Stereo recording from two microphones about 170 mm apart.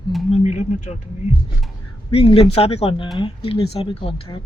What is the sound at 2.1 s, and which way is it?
Speech, 35° left (ahead or behind).